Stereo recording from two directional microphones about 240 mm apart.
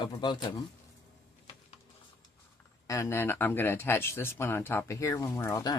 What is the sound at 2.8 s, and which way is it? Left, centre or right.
Speech, centre.